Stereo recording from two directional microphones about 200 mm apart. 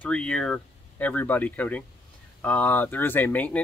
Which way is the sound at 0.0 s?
5° left (ahead or behind).